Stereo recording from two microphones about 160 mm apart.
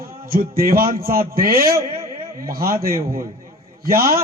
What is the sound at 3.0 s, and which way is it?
Speech, 20° right (ahead or behind).